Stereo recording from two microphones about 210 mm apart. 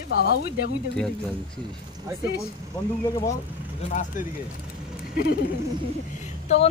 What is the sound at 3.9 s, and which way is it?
Speech, 35° left (ahead or behind).